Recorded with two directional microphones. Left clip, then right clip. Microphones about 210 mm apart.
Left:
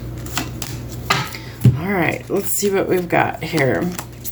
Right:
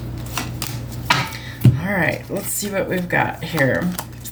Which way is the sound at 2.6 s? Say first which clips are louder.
Left 5 dB; 30° left (ahead or behind).